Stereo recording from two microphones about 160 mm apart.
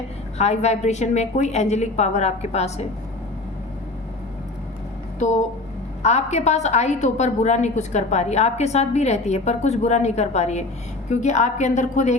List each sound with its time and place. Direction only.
0.3 s a woman's voice: 45° left (ahead or behind)
5.2 s a woman's voice: 45° left (ahead or behind)